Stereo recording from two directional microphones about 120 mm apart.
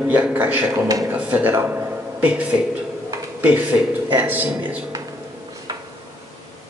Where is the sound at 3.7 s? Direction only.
25° right (ahead or behind).